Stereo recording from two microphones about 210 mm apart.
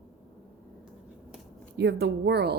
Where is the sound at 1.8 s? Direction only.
55° right (ahead or behind).